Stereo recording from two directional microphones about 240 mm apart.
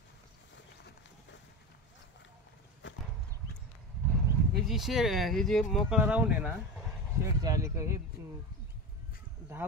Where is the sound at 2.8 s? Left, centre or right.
Left.